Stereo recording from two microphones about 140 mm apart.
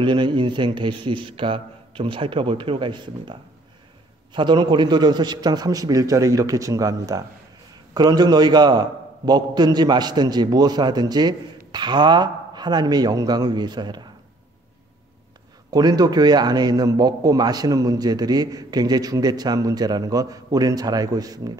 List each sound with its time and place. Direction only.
0.0 s a man's voice: 35° right (ahead or behind)
15.7 s a man's voice: 30° right (ahead or behind)